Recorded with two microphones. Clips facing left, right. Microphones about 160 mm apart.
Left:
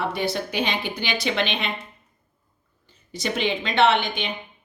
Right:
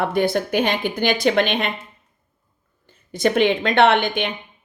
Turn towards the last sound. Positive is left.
turn(degrees=-55)  # may be behind; listen again after turning